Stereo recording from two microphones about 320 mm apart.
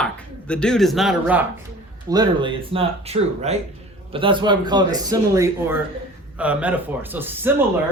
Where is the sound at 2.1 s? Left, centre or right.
Centre.